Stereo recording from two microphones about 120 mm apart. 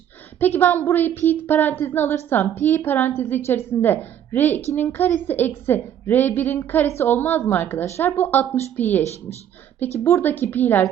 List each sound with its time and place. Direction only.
0.3 s a woman's voice: 15° left (ahead or behind)